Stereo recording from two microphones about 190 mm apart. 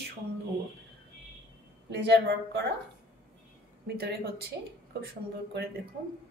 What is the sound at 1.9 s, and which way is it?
Speech, 65° right (ahead or behind).